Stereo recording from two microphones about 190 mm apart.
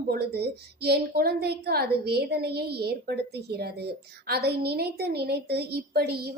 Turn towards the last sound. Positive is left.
turn(degrees=-55)  # may be behind; listen again after turning